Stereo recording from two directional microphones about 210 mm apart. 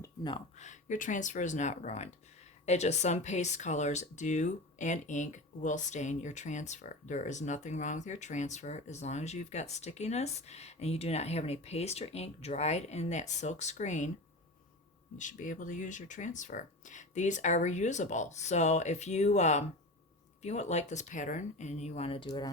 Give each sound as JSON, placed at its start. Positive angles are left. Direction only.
{"t": 0.0, "sound": "a sound", "side_deg": 20}
{"t": 0.5, "sound": "speech", "side_deg": 35}
{"t": 15.2, "sound": "speech", "side_deg": 35}